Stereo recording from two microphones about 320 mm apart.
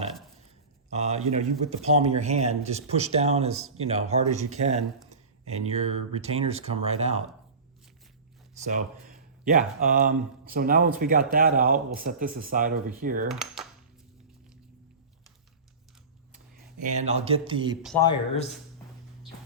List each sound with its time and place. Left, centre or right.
0.9 s a sound: right
1.3 s speech: right
8.5 s speech: right
13.3 s coin: centre
16.3 s speech: right
17.8 s speech: centre